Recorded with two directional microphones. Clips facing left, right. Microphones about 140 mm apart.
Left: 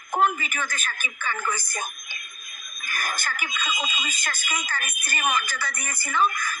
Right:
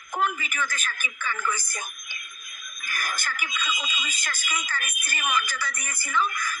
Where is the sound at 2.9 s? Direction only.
50° left (ahead or behind).